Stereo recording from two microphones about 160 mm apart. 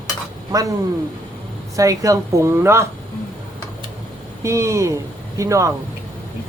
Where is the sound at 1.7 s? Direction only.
20° right (ahead or behind).